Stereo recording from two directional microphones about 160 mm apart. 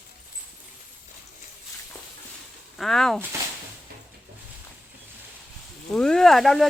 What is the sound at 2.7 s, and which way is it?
Speech, centre (ahead or behind).